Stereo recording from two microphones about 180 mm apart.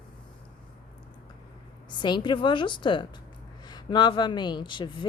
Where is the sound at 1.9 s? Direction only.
25° left (ahead or behind).